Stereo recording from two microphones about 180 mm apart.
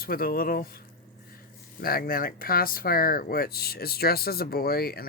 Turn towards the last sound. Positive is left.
turn(degrees=55)  # may be behind; listen again after turning